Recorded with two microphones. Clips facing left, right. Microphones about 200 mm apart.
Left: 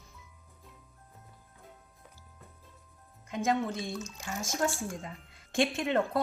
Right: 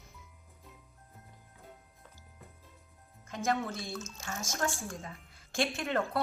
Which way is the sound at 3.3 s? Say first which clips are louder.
Left 3 dB; 15° left (ahead or behind).